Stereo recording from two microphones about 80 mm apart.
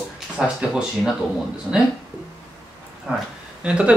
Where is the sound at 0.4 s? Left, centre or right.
Centre.